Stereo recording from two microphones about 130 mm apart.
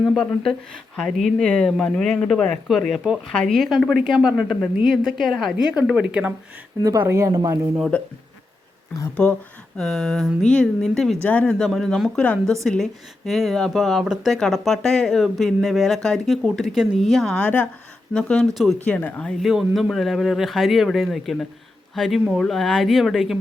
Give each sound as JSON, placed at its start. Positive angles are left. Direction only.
{"t": 0.0, "sound": "speech", "side_deg": 0}
{"t": 7.0, "sound": "a woman's voice", "side_deg": -20}
{"t": 7.9, "sound": "a woman's voice", "side_deg": 10}
{"t": 9.7, "sound": "a woman's voice", "side_deg": 5}
{"t": 18.9, "sound": "speech", "side_deg": 10}